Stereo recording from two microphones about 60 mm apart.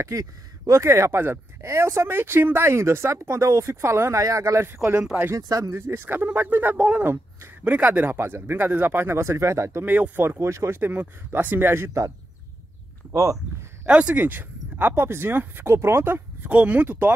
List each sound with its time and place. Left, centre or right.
0.1 s speech: right
0.8 s speech: right
4.2 s speech: right
4.6 s speech: right
5.3 s speech: right
5.7 s speech: right
8.2 s speech: right
9.8 s speech: right
10.2 s speech: right
10.8 s speech: right
13.1 s speech: right
13.8 s speech: centre; by 16.4 s right
16.4 s speech: right